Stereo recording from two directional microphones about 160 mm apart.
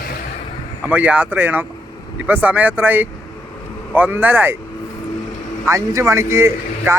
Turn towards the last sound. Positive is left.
turn(degrees=-15)  # may be behind; listen again after turning